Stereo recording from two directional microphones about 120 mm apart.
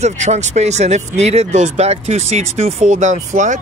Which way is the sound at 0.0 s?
75° right (ahead or behind).